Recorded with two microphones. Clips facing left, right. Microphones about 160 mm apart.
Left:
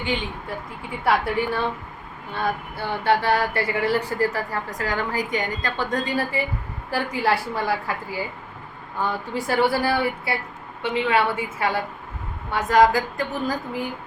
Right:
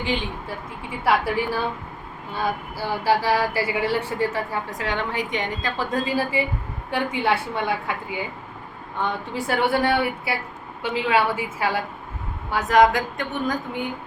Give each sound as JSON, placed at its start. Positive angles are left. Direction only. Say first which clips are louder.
{"t": 0.0, "sound": "speech", "louder": "right 1 dB", "side_deg": 0}